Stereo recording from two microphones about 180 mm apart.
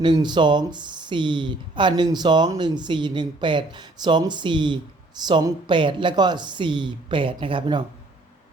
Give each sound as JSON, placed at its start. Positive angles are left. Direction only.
{"t": 0.0, "sound": "speech", "side_deg": -25}